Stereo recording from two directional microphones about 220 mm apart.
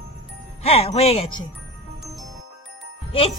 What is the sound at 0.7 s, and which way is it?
Speech, 25° left (ahead or behind).